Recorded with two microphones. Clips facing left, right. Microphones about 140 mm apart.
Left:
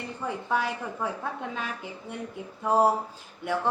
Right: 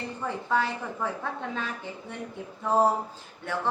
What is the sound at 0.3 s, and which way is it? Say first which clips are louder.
A woman's voice: right 1 dB; 10° left (ahead or behind).